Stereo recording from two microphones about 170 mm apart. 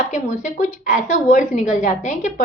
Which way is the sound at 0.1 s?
45° left (ahead or behind).